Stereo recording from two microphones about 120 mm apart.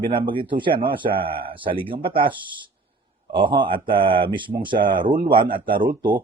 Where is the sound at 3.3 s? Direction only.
40° right (ahead or behind).